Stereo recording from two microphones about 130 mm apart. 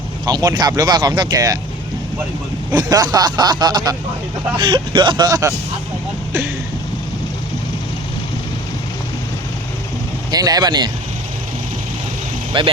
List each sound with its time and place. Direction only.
0.3 s speech: 35° right (ahead or behind)
2.7 s speech: 30° right (ahead or behind)
10.3 s speech: 30° right (ahead or behind)
12.5 s speech: 40° right (ahead or behind)